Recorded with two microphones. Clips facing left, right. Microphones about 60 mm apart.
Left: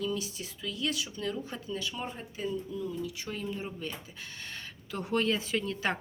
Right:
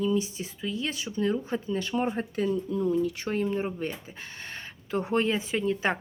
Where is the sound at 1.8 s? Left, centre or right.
Right.